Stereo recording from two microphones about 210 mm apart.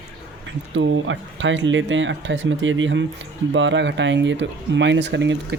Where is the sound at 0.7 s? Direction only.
60° right (ahead or behind).